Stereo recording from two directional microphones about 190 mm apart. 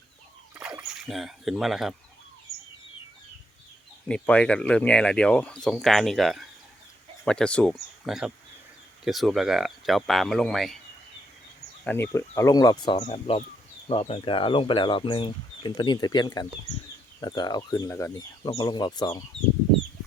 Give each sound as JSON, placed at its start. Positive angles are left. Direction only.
{"t": 0.5, "sound": "speech", "side_deg": -5}
{"t": 4.1, "sound": "speech", "side_deg": 5}
{"t": 11.9, "sound": "speech", "side_deg": 10}